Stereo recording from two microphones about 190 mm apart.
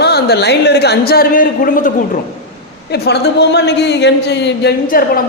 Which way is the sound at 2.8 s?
60° left (ahead or behind).